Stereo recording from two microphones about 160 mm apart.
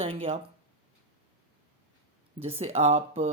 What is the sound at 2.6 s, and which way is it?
Speech, 40° right (ahead or behind).